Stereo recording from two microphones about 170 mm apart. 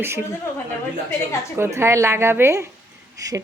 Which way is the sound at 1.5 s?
15° right (ahead or behind).